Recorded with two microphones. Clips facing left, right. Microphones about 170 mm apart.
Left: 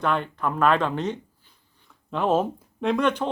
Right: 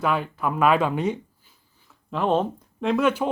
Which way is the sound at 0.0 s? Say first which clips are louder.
Right 1 dB; 5° right (ahead or behind).